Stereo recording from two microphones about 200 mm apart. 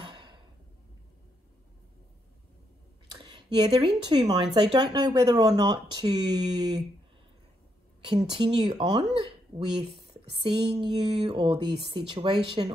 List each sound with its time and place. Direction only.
0.0 s a sound: 20° right (ahead or behind)
3.2 s speech: 20° right (ahead or behind)
8.0 s speech: 25° right (ahead or behind)
10.7 s speech: 30° right (ahead or behind)